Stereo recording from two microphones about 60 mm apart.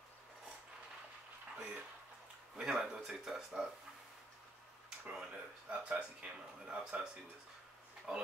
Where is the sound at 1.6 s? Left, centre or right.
Centre.